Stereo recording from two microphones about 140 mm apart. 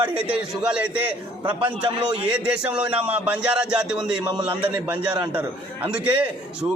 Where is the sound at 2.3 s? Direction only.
10° right (ahead or behind).